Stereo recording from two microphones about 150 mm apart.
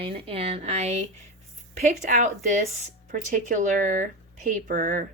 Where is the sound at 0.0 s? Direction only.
40° right (ahead or behind).